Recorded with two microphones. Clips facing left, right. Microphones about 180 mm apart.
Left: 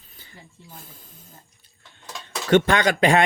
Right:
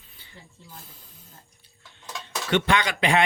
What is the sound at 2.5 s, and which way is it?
Speech, 45° left (ahead or behind).